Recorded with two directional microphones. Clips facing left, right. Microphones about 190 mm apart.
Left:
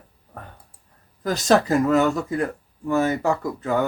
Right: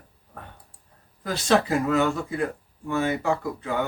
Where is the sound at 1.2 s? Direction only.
40° left (ahead or behind).